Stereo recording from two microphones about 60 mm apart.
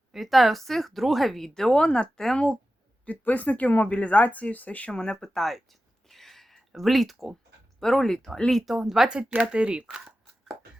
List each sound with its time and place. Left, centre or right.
0.1 s speech: centre
3.1 s speech: left; by 5.6 s centre
6.1 s a sound: centre
7.8 s speech: centre